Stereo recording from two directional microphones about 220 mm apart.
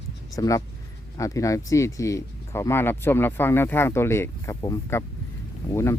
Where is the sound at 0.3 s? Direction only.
15° left (ahead or behind).